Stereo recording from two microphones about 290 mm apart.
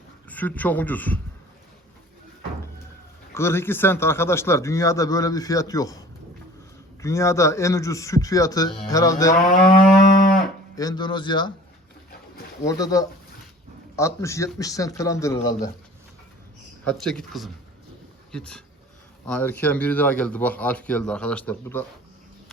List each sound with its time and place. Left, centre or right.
0.3 s a man's voice: centre
3.3 s speech: centre
7.0 s speech: centre
10.8 s speech: centre
12.6 s speech: centre
16.8 s a man's voice: centre